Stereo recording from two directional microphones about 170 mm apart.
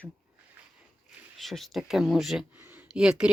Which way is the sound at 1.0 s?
Centre (ahead or behind).